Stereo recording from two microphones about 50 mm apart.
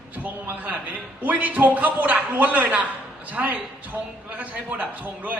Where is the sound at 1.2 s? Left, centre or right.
Right.